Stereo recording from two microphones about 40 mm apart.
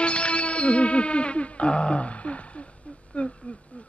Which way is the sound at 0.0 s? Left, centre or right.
Left.